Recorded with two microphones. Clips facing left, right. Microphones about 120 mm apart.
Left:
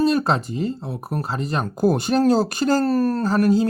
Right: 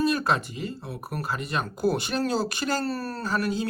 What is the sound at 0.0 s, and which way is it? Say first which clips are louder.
Speech: left 5 dB; 30° left (ahead or behind).